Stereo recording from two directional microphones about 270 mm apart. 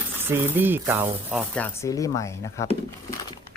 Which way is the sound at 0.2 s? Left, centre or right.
Centre.